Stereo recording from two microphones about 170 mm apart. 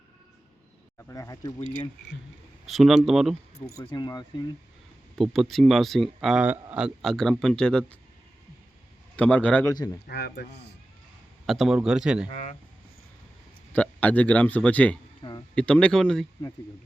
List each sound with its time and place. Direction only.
0.9 s speech: 15° left (ahead or behind)
2.6 s speech: centre (ahead or behind)
3.8 s speech: 25° left (ahead or behind)
5.1 s speech: centre (ahead or behind)
9.1 s speech: 10° left (ahead or behind)
9.7 s speech: 25° left (ahead or behind)
10.1 s speech: 65° left (ahead or behind)
11.4 s speech: centre (ahead or behind)
12.3 s speech: 35° left (ahead or behind)
13.7 s speech: 10° left (ahead or behind)
15.2 s a sound: 25° left (ahead or behind)
15.5 s speech: 5° left (ahead or behind)